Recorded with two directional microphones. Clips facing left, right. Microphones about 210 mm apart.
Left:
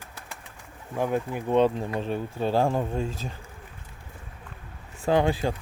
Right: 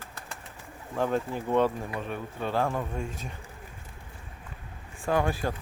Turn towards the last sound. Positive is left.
turn(degrees=20)  # may be behind; listen again after turning